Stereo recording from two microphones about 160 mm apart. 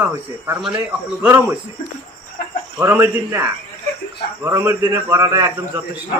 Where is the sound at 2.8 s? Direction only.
15° right (ahead or behind).